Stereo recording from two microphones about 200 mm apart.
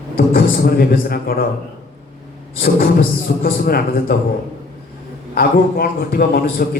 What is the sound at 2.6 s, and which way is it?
A man's voice, 45° left (ahead or behind).